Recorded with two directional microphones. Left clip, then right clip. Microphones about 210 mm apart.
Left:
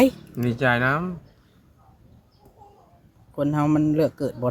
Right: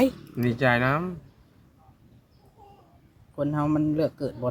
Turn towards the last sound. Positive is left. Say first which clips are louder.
# left 4 dB
turn(degrees=30)  # may be behind; listen again after turning